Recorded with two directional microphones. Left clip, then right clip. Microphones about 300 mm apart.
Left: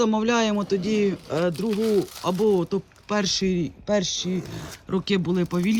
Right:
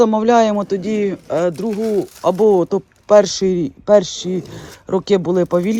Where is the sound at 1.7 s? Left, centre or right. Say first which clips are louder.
Right 4 dB; left.